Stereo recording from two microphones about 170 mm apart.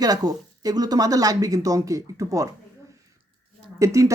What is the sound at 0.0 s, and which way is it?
Speech, 20° right (ahead or behind).